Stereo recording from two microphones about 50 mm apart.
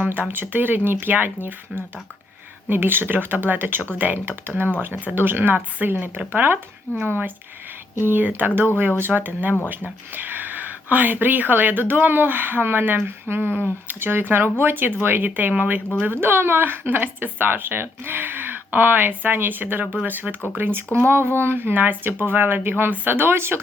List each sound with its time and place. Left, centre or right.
0.1 s speech: right
16.2 s speech: right
20.6 s speech: right